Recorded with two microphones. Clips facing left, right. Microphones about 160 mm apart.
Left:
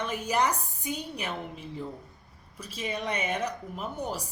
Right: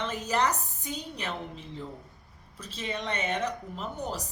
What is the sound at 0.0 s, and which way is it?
A woman's voice, 10° left (ahead or behind).